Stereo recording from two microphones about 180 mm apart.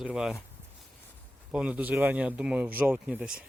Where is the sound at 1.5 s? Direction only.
10° right (ahead or behind).